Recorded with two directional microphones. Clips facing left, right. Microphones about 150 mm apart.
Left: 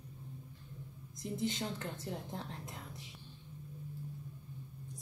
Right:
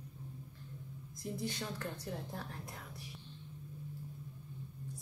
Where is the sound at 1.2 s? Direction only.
20° left (ahead or behind).